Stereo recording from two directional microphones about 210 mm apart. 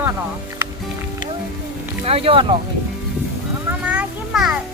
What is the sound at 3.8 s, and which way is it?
Children playing, 5° right (ahead or behind).